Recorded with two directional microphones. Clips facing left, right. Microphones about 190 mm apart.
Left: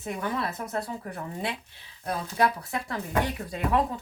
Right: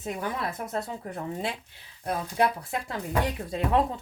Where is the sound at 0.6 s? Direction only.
25° right (ahead or behind).